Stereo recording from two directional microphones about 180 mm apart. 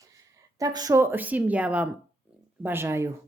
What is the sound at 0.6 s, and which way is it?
Speech, 20° right (ahead or behind).